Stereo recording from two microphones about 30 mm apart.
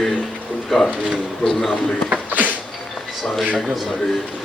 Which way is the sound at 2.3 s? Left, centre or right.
Right.